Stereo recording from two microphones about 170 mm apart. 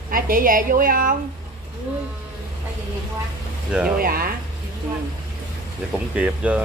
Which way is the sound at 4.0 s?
60° right (ahead or behind).